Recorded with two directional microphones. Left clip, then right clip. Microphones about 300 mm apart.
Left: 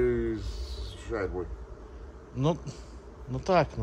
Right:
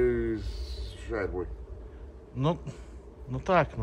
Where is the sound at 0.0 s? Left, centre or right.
Centre.